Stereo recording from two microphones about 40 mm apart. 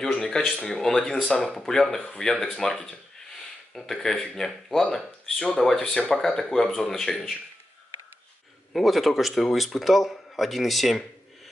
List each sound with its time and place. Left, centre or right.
0.0 s speech: centre
5.9 s speech: left
6.3 s speech: centre
8.7 s speech: centre